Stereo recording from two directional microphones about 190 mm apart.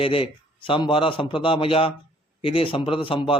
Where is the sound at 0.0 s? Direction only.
30° left (ahead or behind).